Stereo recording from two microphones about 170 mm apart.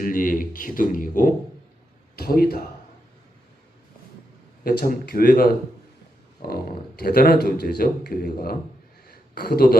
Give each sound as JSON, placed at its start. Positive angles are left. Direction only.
{"t": 0.0, "sound": "speech", "side_deg": 55}
{"t": 2.1, "sound": "a man's voice", "side_deg": 65}
{"t": 4.6, "sound": "a man's voice", "side_deg": 60}
{"t": 9.0, "sound": "a sound", "side_deg": 65}